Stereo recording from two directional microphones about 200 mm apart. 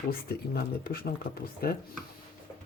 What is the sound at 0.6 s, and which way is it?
Speech, 50° left (ahead or behind).